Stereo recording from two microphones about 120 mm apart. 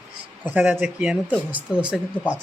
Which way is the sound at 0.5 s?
15° right (ahead or behind).